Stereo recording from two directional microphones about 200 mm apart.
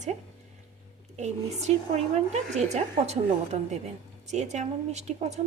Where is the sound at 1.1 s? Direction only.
35° right (ahead or behind).